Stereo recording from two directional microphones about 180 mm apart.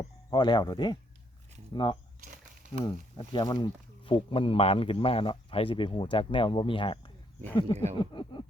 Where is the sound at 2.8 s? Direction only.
25° left (ahead or behind).